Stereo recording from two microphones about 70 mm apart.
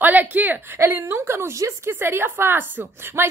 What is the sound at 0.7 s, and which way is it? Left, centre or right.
A woman's voice, right.